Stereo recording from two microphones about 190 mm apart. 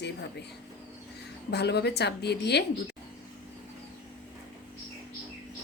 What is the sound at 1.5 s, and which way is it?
A woman's voice, 60° left (ahead or behind).